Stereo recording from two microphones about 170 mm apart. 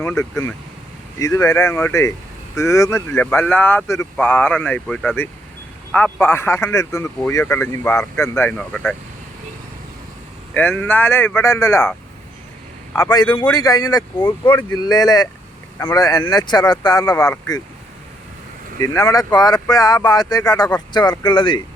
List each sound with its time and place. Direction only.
0.0 s speech: 15° left (ahead or behind)
10.5 s a man's voice: 10° left (ahead or behind)
18.8 s a man's voice: 20° left (ahead or behind)